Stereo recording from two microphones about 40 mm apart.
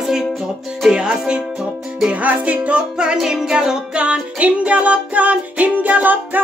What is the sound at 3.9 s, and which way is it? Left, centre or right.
Music, right.